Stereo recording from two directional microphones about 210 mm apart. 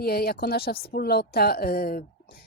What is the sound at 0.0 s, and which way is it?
A woman's voice, 45° left (ahead or behind).